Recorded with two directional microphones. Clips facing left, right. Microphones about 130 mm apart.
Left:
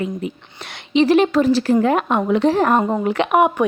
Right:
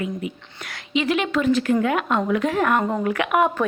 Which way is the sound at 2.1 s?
25° left (ahead or behind).